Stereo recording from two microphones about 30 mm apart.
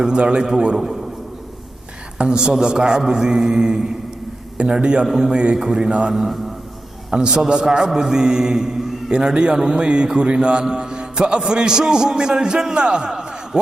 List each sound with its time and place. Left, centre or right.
0.0 s a man's voice: right
2.1 s a woman's voice: right